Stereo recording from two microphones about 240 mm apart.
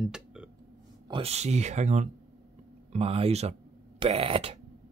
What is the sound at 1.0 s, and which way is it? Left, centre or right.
Speech, right.